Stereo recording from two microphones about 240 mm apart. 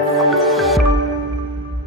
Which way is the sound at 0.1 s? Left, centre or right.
Centre.